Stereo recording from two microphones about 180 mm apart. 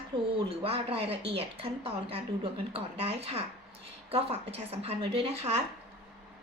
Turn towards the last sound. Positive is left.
turn(degrees=-30)  # may be behind; listen again after turning